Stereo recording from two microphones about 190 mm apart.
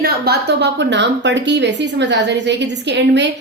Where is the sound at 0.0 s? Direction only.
60° right (ahead or behind).